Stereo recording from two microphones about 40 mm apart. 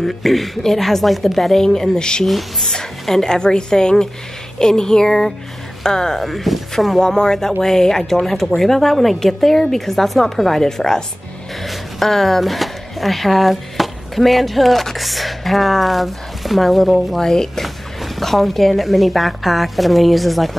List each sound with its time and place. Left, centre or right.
0.0 s speech: centre
2.2 s a woman's voice: centre
7.0 s speech: centre